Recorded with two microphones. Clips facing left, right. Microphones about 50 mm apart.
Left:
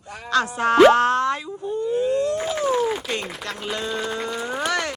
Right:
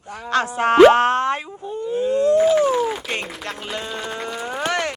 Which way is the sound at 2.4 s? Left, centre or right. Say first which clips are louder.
Right 5 dB; centre.